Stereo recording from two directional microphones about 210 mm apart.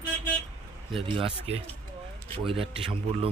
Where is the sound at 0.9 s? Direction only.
25° right (ahead or behind).